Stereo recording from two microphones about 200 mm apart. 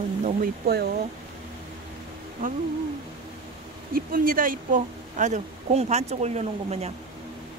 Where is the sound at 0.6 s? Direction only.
55° right (ahead or behind).